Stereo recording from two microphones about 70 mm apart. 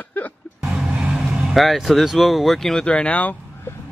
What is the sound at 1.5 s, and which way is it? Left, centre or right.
Speech, centre.